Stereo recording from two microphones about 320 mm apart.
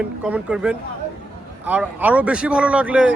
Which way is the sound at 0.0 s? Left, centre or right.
Centre.